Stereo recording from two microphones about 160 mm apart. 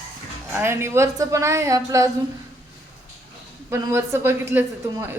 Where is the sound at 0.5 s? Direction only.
15° right (ahead or behind).